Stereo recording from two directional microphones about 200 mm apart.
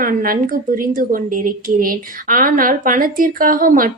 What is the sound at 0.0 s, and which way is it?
A woman's voice, 45° right (ahead or behind).